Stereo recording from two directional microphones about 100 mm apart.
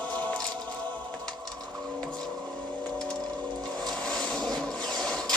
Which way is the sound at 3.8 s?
5° left (ahead or behind).